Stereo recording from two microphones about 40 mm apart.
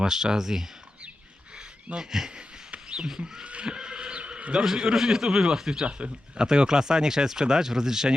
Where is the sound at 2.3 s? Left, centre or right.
Centre.